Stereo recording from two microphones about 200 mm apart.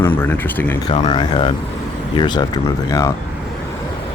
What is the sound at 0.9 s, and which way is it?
Speech, 25° left (ahead or behind).